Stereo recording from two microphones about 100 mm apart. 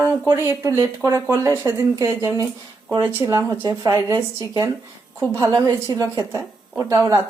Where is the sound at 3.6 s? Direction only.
45° right (ahead or behind).